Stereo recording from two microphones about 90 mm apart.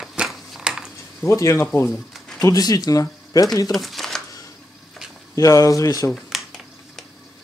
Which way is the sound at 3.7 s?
Centre (ahead or behind).